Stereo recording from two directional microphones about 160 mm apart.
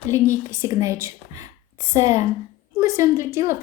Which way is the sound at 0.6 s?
20° right (ahead or behind).